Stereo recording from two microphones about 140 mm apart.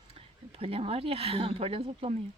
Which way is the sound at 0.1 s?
45° right (ahead or behind).